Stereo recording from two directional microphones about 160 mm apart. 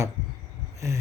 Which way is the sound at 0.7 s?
20° right (ahead or behind).